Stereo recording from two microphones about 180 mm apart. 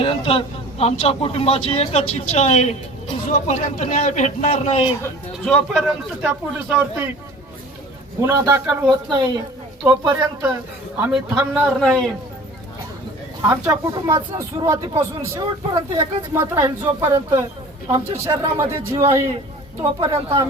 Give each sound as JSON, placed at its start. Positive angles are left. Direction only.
{"t": 0.0, "sound": "speech", "side_deg": 30}
{"t": 5.5, "sound": "speech", "side_deg": 0}
{"t": 8.2, "sound": "a man's voice", "side_deg": -15}
{"t": 11.8, "sound": "speech", "side_deg": 0}
{"t": 13.5, "sound": "a man's voice", "side_deg": -20}
{"t": 20.0, "sound": "speech", "side_deg": -30}